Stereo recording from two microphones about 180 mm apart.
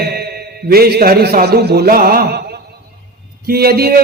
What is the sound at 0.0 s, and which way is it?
A man's voice, 60° right (ahead or behind).